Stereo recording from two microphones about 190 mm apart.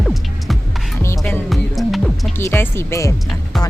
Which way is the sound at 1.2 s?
Centre (ahead or behind).